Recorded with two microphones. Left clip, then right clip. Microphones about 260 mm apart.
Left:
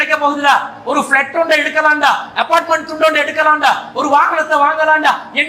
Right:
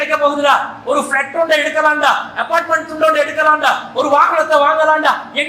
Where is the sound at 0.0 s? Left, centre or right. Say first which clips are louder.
Left 1 dB; left.